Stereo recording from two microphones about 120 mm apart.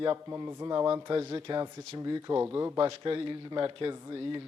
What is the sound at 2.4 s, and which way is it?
Speech, 15° right (ahead or behind).